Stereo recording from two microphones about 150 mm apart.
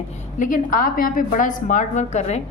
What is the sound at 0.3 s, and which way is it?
A woman's voice, 60° left (ahead or behind).